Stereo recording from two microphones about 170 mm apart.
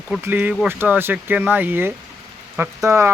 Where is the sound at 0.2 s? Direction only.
10° right (ahead or behind).